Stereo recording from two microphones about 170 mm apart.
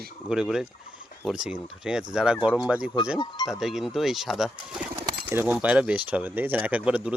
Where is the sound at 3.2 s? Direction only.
25° left (ahead or behind).